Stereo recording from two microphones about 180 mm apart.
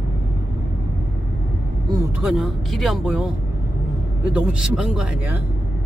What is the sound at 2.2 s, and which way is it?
Speech, centre (ahead or behind).